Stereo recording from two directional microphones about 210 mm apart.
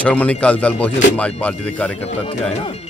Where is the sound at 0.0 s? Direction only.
5° left (ahead or behind).